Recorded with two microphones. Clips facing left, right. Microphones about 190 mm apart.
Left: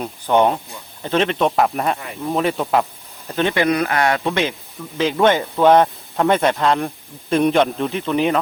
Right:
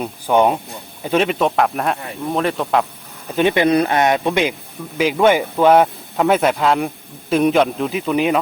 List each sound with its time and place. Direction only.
0.0 s speech: 10° right (ahead or behind)
3.2 s speech: 15° right (ahead or behind)